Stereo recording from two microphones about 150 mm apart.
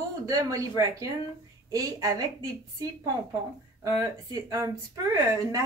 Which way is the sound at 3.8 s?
20° right (ahead or behind).